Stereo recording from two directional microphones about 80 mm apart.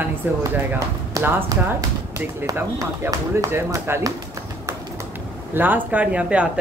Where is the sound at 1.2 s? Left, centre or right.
Right.